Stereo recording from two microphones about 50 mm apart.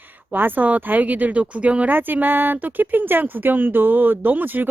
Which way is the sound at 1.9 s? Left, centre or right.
Right.